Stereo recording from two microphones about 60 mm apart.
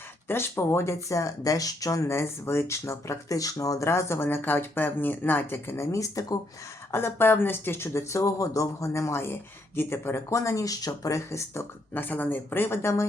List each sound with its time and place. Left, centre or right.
0.3 s speech: left
3.8 s speech: left
5.7 s speech: left
6.9 s speech: left
8.9 s speech: left
11.9 s speech: left